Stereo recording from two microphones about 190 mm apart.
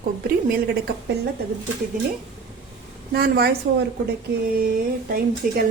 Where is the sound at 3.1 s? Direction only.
55° right (ahead or behind).